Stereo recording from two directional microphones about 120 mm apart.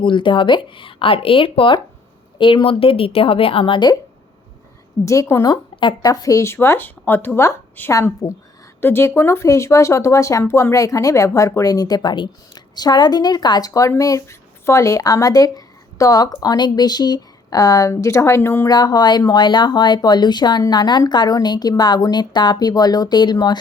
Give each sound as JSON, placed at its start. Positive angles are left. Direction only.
{"t": 0.0, "sound": "speech", "side_deg": 40}
{"t": 5.0, "sound": "speech", "side_deg": 25}
{"t": 18.7, "sound": "speech", "side_deg": 35}